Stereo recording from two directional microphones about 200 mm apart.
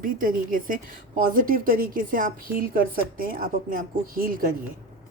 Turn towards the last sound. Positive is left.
turn(degrees=-45)  # may be behind; listen again after turning